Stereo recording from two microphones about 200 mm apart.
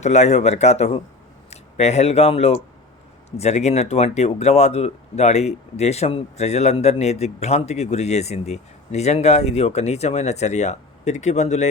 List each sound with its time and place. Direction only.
0.0 s speech: 35° left (ahead or behind)